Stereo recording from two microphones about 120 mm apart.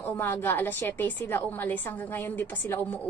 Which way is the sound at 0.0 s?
15° left (ahead or behind).